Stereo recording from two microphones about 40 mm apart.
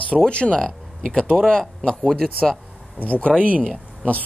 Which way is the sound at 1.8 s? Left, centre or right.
Left.